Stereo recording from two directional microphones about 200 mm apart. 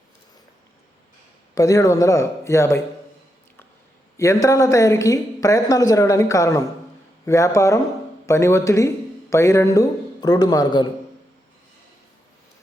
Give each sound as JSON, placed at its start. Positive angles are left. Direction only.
{"t": 1.5, "sound": "a woman's voice", "side_deg": 15}
{"t": 4.2, "sound": "a woman's voice", "side_deg": 15}